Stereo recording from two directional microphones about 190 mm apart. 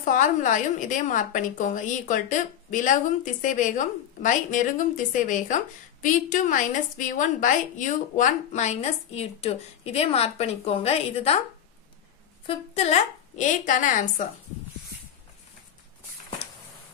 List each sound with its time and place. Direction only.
0.0 s a woman's voice: 45° left (ahead or behind)
12.4 s a woman's voice: 35° left (ahead or behind)